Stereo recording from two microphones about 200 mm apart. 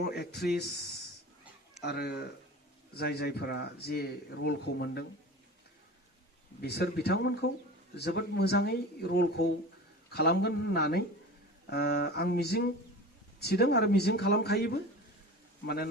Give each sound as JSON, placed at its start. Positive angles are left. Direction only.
{"t": 0.0, "sound": "speech", "side_deg": 55}
{"t": 6.6, "sound": "speech", "side_deg": 55}